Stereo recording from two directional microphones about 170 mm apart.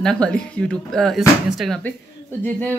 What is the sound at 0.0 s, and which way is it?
A woman's voice, 5° left (ahead or behind).